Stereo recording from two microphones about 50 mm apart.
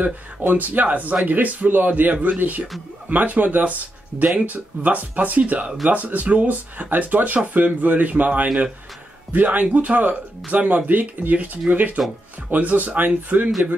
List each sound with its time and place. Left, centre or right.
0.0 s speech: right
4.1 s speech: centre
4.5 s speech: right